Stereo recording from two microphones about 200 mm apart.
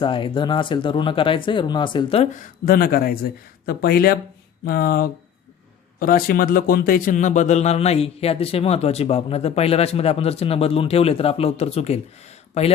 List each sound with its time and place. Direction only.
0.0 s speech: 25° left (ahead or behind)